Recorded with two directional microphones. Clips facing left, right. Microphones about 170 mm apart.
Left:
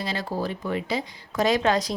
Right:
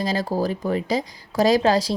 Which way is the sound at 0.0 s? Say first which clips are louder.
Right 6 dB; 40° right (ahead or behind).